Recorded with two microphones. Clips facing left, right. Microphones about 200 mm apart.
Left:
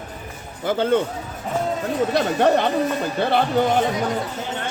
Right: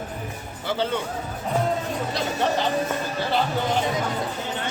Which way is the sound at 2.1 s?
55° left (ahead or behind).